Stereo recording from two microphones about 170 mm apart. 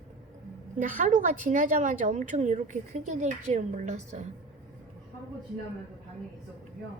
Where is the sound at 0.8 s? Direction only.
50° right (ahead or behind).